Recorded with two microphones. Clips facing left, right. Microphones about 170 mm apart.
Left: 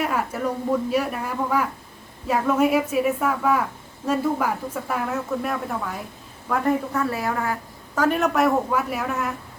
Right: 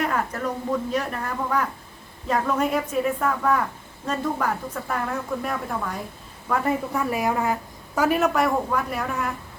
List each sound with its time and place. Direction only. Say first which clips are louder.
0.0 s speech: left 1 dB; 5° left (ahead or behind)
6.9 s a woman's voice: right 1 dB; 15° right (ahead or behind)
8.0 s speech: left 1 dB; 5° right (ahead or behind)